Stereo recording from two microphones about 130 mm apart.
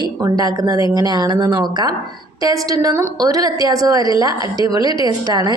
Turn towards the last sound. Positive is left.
turn(degrees=-30)  # may be behind; listen again after turning